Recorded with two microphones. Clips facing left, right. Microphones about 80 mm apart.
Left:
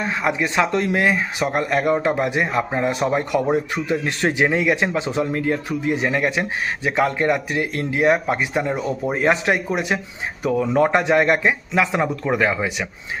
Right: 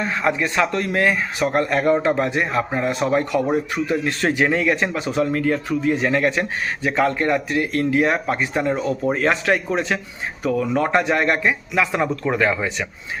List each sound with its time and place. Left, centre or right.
0.0 s speech: centre
10.4 s speech: left; by 12.9 s centre